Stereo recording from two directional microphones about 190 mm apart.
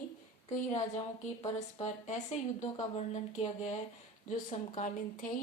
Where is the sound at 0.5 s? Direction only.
35° left (ahead or behind).